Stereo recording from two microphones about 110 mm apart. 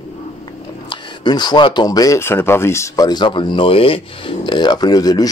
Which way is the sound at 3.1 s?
45° left (ahead or behind).